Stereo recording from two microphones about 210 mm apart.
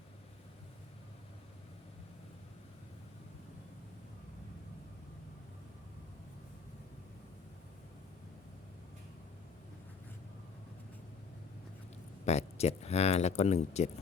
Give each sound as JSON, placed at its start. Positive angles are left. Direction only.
{"t": 12.2, "sound": "speech", "side_deg": 30}